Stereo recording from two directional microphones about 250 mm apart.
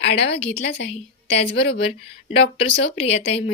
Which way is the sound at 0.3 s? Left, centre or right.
Left.